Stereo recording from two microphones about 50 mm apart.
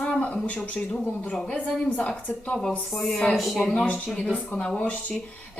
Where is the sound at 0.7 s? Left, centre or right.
Left.